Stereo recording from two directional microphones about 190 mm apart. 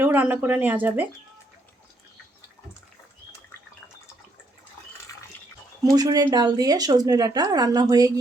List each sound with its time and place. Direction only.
0.0 s speech: 10° right (ahead or behind)
6.0 s a woman's voice: 20° right (ahead or behind)